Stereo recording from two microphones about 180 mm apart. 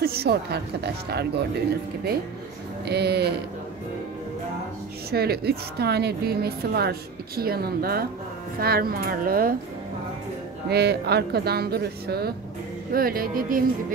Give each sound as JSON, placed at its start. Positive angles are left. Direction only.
{"t": 0.0, "sound": "a woman's voice", "side_deg": -60}
{"t": 5.1, "sound": "a woman's voice", "side_deg": -60}
{"t": 10.7, "sound": "a woman's voice", "side_deg": -65}